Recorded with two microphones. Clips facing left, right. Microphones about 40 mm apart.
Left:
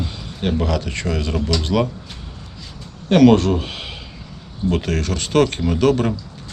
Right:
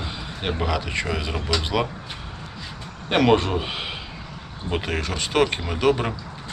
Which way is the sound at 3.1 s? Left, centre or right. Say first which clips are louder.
Left 6 dB; centre.